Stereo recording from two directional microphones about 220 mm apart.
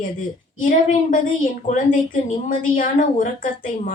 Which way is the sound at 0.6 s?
35° left (ahead or behind).